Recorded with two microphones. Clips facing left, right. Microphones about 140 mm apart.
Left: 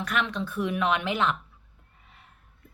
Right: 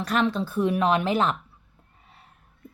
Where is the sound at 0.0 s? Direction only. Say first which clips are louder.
Right 5 dB; 35° right (ahead or behind).